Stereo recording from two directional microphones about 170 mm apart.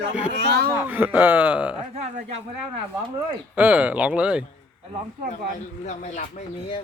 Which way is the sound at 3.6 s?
10° right (ahead or behind).